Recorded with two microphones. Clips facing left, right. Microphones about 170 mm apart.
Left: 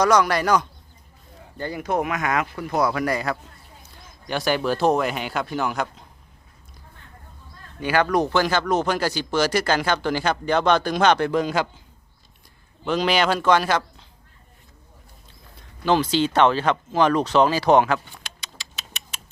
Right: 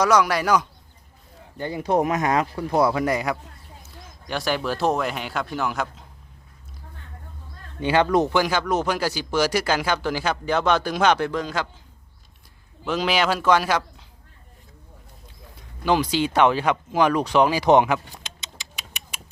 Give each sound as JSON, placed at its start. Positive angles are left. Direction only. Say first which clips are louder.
{"t": 0.0, "sound": "speech", "louder": "left 1 dB", "side_deg": -5}
{"t": 1.5, "sound": "speech", "louder": "right 1 dB", "side_deg": -20}
{"t": 1.8, "sound": "speech", "louder": "right 4 dB", "side_deg": -35}
{"t": 3.8, "sound": "speech", "louder": "left 2 dB", "side_deg": 0}
{"t": 7.8, "sound": "speech", "louder": "right 1 dB", "side_deg": -25}
{"t": 8.3, "sound": "speech", "louder": "left 1 dB", "side_deg": -10}
{"t": 11.3, "sound": "a man's voice", "louder": "left 5 dB", "side_deg": 10}
{"t": 12.8, "sound": "a man's voice", "louder": "left 2 dB", "side_deg": -5}
{"t": 15.8, "sound": "speech", "louder": "left 1 dB", "side_deg": -10}
{"t": 18.2, "sound": "a sound", "louder": "even", "side_deg": -20}